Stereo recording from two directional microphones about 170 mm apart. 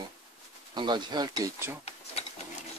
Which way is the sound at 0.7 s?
25° right (ahead or behind).